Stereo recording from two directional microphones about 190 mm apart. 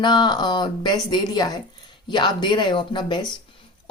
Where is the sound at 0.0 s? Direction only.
25° left (ahead or behind).